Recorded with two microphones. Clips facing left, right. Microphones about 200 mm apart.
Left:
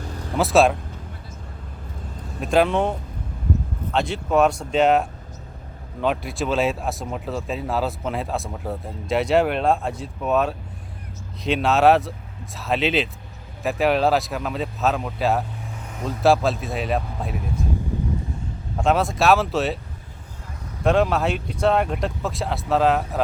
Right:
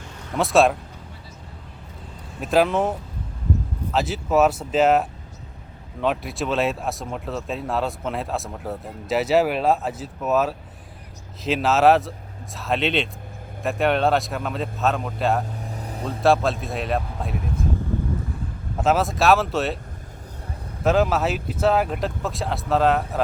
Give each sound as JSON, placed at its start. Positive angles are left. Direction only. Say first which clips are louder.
{"t": 0.0, "sound": "vehicle", "louder": "left 6 dB", "side_deg": 35}
{"t": 0.3, "sound": "speech", "louder": "left 1 dB", "side_deg": 0}
{"t": 2.4, "sound": "speech", "louder": "even", "side_deg": 0}
{"t": 3.9, "sound": "speech", "louder": "even", "side_deg": -5}
{"t": 15.6, "sound": "vehicle", "louder": "right 2 dB", "side_deg": -35}
{"t": 16.0, "sound": "speech", "louder": "left 1 dB", "side_deg": 0}
{"t": 18.8, "sound": "speech", "louder": "even", "side_deg": 0}
{"t": 20.8, "sound": "speech", "louder": "even", "side_deg": 0}